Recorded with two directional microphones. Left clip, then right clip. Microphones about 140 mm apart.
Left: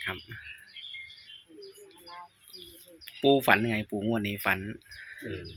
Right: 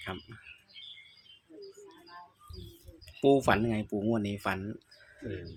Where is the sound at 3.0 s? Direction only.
10° right (ahead or behind).